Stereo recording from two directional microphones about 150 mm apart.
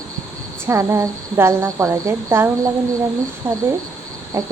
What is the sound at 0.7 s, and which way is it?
A woman's voice, 20° right (ahead or behind).